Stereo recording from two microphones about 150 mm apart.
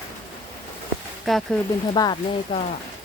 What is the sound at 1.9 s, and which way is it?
Speech, 30° left (ahead or behind).